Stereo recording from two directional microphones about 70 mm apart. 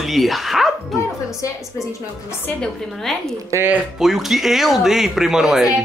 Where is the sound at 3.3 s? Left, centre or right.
Right.